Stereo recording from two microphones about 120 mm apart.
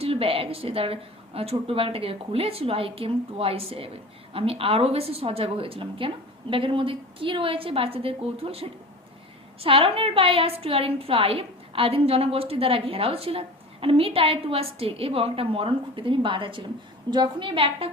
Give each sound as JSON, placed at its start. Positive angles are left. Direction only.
{"t": 0.0, "sound": "a woman's voice", "side_deg": -55}